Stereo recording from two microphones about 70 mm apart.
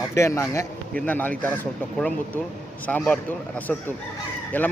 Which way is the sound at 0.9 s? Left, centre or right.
Left.